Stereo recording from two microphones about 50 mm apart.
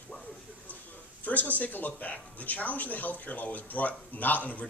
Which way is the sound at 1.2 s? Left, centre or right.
Left.